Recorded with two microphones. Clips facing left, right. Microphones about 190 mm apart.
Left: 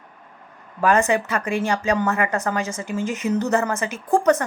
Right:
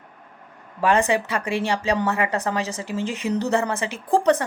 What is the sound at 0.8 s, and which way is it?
A woman's voice, 30° right (ahead or behind).